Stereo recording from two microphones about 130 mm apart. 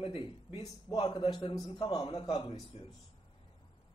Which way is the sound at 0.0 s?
40° left (ahead or behind).